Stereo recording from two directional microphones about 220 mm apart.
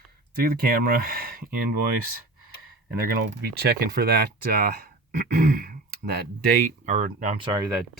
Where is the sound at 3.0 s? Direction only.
45° right (ahead or behind).